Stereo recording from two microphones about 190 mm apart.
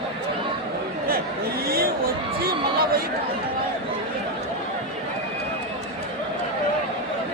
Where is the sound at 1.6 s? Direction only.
50° right (ahead or behind).